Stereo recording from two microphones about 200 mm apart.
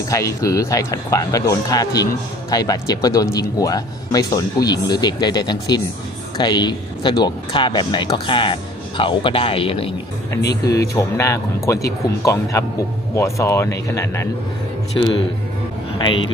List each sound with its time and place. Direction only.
0.1 s speech: 15° left (ahead or behind)
10.9 s speech: 15° left (ahead or behind)
14.9 s speech: 25° left (ahead or behind)